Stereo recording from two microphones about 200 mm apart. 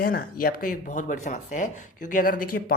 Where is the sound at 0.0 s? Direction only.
45° left (ahead or behind).